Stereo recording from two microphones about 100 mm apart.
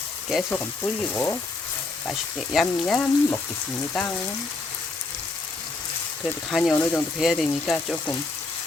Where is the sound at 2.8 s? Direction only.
10° left (ahead or behind).